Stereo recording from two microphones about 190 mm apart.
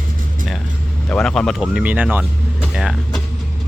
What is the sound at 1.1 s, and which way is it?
Speech, 5° left (ahead or behind).